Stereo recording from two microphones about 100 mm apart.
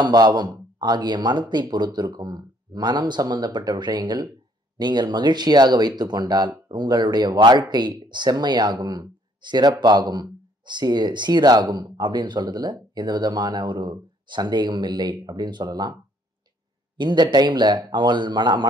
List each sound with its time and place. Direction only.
0.0 s speech: 45° right (ahead or behind)